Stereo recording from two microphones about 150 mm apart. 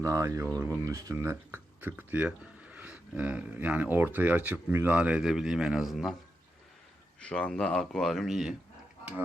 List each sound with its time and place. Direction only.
0.0 s speech: 20° right (ahead or behind); by 6.1 s centre (ahead or behind)
7.2 s speech: 5° left (ahead or behind)